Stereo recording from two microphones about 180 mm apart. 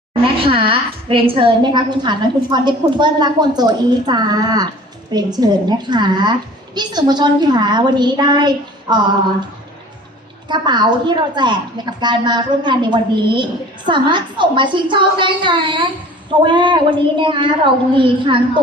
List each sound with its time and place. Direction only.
0.3 s a woman's voice: 30° right (ahead or behind)
10.5 s a woman's voice: 25° right (ahead or behind)